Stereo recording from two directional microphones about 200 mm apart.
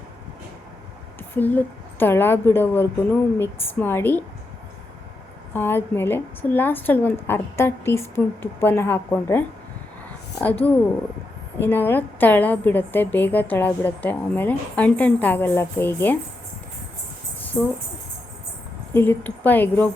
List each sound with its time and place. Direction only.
1.4 s a woman's voice: 10° left (ahead or behind)
5.5 s a woman's voice: 10° left (ahead or behind)
11.6 s a woman's voice: 10° left (ahead or behind)
17.5 s speech: 5° left (ahead or behind)
18.9 s a woman's voice: 10° left (ahead or behind)